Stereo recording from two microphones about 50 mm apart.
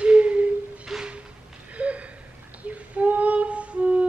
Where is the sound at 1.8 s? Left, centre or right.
Right.